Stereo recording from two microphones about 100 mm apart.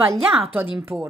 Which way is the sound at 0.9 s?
15° right (ahead or behind).